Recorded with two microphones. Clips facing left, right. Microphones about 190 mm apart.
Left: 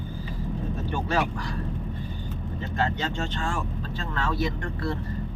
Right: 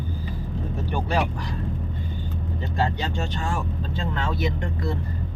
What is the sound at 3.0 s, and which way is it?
Speech, 15° right (ahead or behind).